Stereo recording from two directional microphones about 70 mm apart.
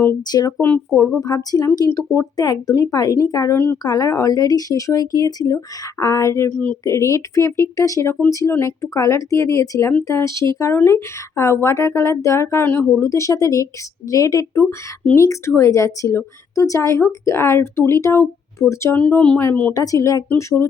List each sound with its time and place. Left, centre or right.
0.2 s speech: left
0.6 s speech: left
1.2 s speech: left
3.5 s speech: left
3.8 s speech: left
6.5 s speech: centre
6.8 s a woman's voice: left
12.6 s speech: left
13.0 s a woman's voice: left
15.1 s a woman's voice: left
18.9 s speech: left
19.4 s speech: left
19.7 s speech: left